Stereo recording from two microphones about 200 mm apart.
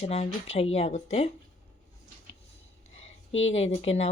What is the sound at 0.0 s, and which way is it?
Speech, 30° left (ahead or behind).